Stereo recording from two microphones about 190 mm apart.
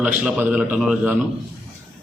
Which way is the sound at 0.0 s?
5° right (ahead or behind).